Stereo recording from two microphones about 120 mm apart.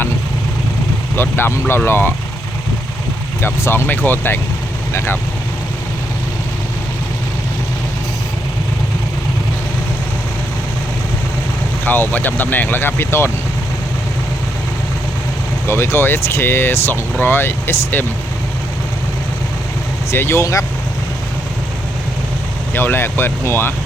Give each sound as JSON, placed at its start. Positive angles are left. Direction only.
{"t": 1.1, "sound": "speech", "side_deg": 20}
{"t": 3.4, "sound": "speech", "side_deg": 20}
{"t": 11.9, "sound": "speech", "side_deg": 15}
{"t": 15.6, "sound": "speech", "side_deg": 20}
{"t": 20.1, "sound": "speech", "side_deg": 20}
{"t": 22.7, "sound": "speech", "side_deg": 15}